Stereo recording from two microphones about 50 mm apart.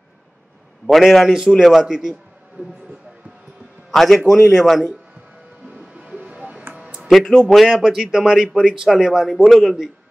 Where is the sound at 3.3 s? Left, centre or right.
Centre.